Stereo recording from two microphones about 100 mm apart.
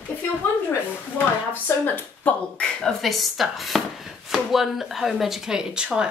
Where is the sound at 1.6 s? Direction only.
15° left (ahead or behind); by 6.1 s 10° right (ahead or behind).